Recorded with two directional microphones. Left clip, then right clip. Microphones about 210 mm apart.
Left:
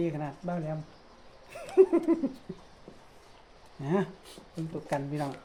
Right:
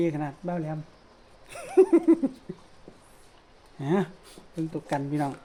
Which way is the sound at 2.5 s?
45° right (ahead or behind).